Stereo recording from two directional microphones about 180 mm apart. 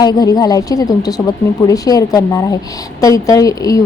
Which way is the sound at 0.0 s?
20° left (ahead or behind).